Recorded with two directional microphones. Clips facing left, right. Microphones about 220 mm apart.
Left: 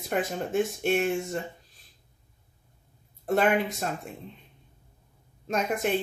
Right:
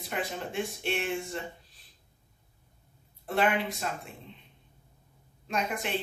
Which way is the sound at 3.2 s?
45° left (ahead or behind).